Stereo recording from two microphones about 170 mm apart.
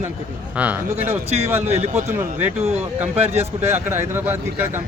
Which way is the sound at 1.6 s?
40° right (ahead or behind).